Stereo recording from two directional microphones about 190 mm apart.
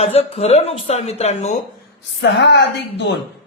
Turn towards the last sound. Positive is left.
turn(degrees=65)  # may be behind; listen again after turning